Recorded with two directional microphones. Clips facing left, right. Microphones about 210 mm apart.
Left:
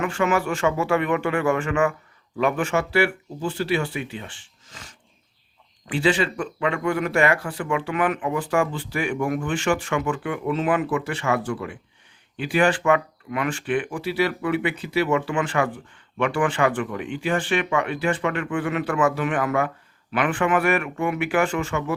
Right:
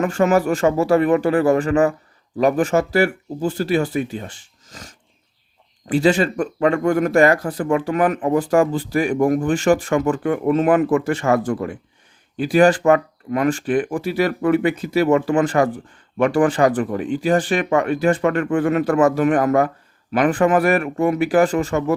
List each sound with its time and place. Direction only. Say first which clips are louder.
0.0 s speech: right 6 dB; 40° right (ahead or behind)